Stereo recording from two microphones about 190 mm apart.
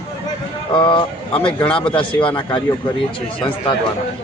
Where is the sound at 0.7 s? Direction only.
25° left (ahead or behind).